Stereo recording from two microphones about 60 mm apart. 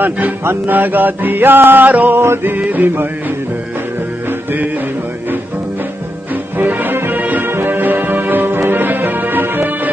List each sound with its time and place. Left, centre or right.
0.5 s music: right
6.6 s music: right